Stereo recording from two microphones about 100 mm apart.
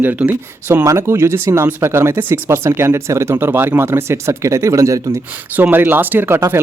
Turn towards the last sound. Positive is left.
turn(degrees=-25)  # may be behind; listen again after turning